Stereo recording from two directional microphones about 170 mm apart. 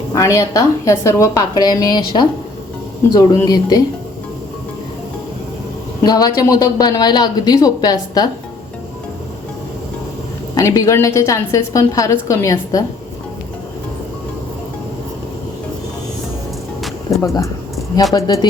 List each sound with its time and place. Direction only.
0.1 s speech: 20° left (ahead or behind)
6.0 s speech: 20° left (ahead or behind)
10.5 s speech: 20° left (ahead or behind)
17.2 s speech: 20° left (ahead or behind)